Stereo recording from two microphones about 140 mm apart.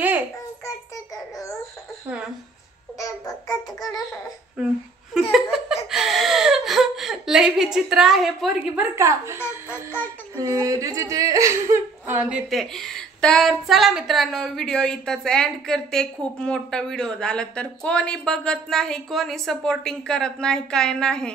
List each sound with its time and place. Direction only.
0.7 s child singing: 20° left (ahead or behind)
3.0 s music: 25° left (ahead or behind)
5.1 s laughter: 5° right (ahead or behind)
5.9 s speech: centre (ahead or behind)
8.9 s a woman's voice: 20° right (ahead or behind); by 21.3 s 5° left (ahead or behind)